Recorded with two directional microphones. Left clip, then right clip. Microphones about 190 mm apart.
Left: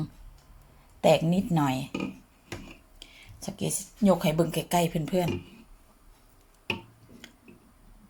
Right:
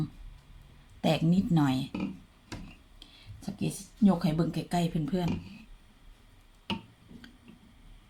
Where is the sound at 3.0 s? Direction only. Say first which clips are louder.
Left 5 dB; 30° left (ahead or behind).